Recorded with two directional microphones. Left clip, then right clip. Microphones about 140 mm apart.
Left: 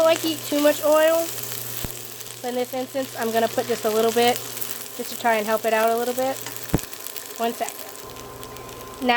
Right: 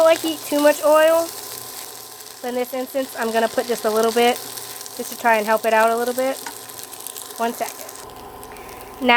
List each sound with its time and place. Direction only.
0.0 s speech: 20° right (ahead or behind)
2.4 s speech: 25° right (ahead or behind)
7.3 s speech: 25° right (ahead or behind)